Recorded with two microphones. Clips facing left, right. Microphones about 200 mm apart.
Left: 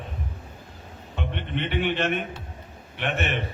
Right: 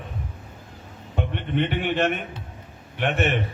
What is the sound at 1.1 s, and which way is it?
A man's voice, 45° right (ahead or behind).